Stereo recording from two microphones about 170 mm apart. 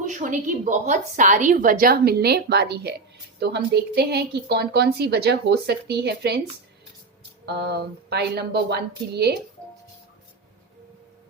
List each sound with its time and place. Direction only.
0.0 s a woman's voice: 50° right (ahead or behind); by 6.4 s 75° right (ahead or behind)
7.4 s a woman's voice: 75° right (ahead or behind)